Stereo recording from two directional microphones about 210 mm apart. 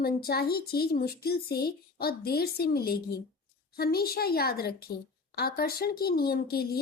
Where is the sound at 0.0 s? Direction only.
50° left (ahead or behind).